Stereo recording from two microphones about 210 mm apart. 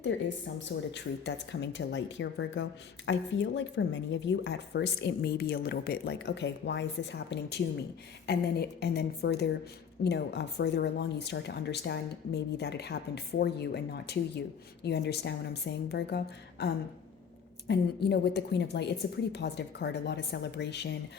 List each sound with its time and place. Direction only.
0.9 s speech: 55° left (ahead or behind)